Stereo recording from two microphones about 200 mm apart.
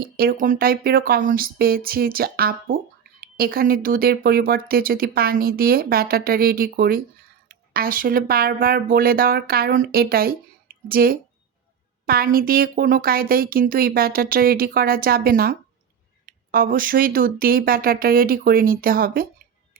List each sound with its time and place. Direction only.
0.0 s speech: 45° right (ahead or behind)